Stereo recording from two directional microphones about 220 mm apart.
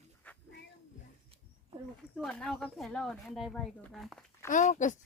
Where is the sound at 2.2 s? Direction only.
5° left (ahead or behind).